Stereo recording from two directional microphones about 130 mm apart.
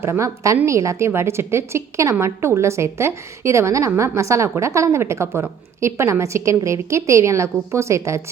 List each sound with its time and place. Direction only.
0.0 s a woman's voice: 20° right (ahead or behind)